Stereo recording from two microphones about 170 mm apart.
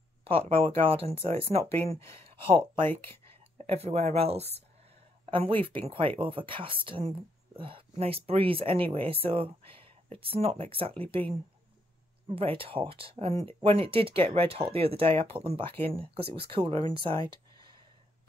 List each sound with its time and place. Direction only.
0.2 s speech: 35° right (ahead or behind)
2.8 s speech: 15° left (ahead or behind)
3.5 s speech: 35° right (ahead or behind)
12.4 s speech: 35° right (ahead or behind)